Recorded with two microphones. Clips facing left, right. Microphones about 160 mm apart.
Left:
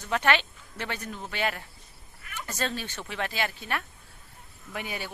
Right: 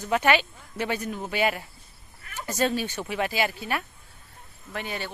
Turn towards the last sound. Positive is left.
turn(degrees=10)  # may be behind; listen again after turning